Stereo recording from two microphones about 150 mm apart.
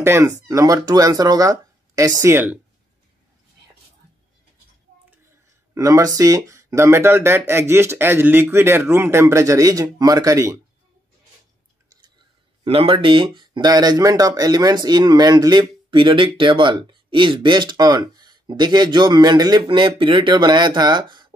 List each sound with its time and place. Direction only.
0.0 s speech: 20° right (ahead or behind)
5.8 s speech: 20° right (ahead or behind)
12.6 s speech: 40° right (ahead or behind)